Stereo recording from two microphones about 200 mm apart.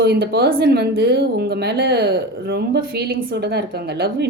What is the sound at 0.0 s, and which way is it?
Speech, 55° right (ahead or behind).